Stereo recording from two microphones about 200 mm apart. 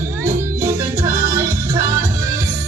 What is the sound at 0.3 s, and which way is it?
Music, 15° right (ahead or behind).